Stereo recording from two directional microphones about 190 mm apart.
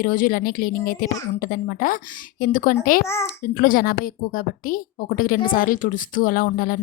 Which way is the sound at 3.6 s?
45° left (ahead or behind).